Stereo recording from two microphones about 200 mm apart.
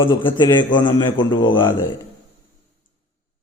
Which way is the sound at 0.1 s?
25° left (ahead or behind).